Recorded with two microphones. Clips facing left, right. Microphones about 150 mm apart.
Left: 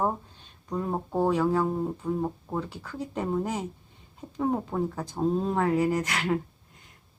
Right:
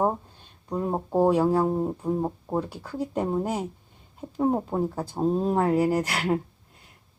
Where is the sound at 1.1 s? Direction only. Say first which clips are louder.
Right 4 dB; 10° right (ahead or behind).